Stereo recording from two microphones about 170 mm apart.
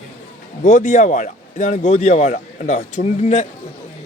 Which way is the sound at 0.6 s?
50° left (ahead or behind).